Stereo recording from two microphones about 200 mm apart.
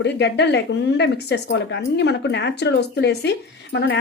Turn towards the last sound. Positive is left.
turn(degrees=60)  # may be behind; listen again after turning